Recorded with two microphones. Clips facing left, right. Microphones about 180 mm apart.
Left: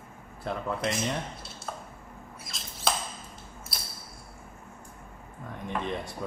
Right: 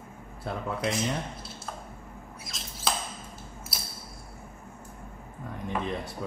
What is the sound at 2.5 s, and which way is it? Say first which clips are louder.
Rodents: left 2 dB; centre (ahead or behind).